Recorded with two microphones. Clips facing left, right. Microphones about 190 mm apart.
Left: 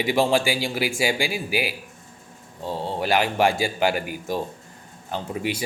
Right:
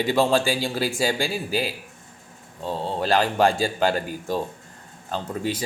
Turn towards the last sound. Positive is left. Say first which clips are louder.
# even
turn(degrees=15)  # may be behind; listen again after turning